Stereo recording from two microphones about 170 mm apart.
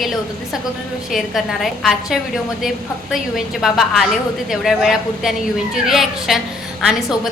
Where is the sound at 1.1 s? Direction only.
Centre (ahead or behind).